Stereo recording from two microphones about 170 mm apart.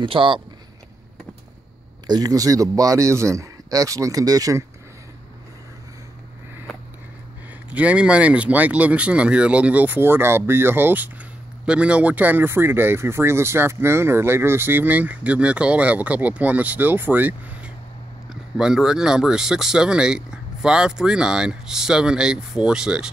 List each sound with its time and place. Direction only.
0.0 s a man's voice: 30° right (ahead or behind)
2.0 s a man's voice: 20° right (ahead or behind)
7.7 s speech: 10° right (ahead or behind)